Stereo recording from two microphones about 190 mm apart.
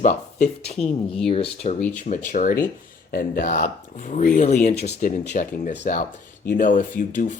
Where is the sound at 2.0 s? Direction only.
40° left (ahead or behind).